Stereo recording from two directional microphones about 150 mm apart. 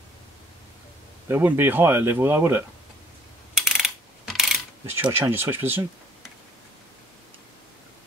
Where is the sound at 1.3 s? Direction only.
15° right (ahead or behind).